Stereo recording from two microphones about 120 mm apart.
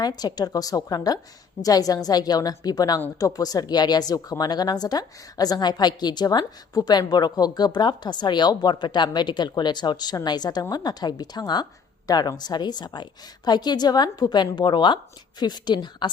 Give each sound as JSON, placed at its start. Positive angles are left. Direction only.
{"t": 0.0, "sound": "speech", "side_deg": 35}